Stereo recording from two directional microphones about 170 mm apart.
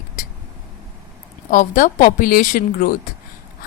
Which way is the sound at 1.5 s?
50° left (ahead or behind).